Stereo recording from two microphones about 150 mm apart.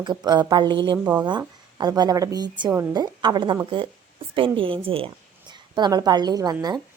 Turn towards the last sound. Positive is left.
turn(degrees=-25)  # may be behind; listen again after turning